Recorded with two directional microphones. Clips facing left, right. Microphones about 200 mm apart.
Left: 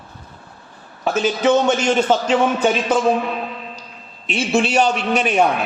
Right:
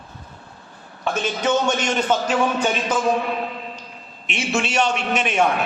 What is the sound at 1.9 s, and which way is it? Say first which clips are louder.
Speech: left 4 dB; 30° left (ahead or behind).